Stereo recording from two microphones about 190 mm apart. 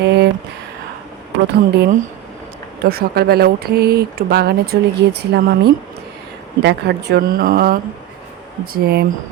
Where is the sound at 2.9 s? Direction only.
55° right (ahead or behind).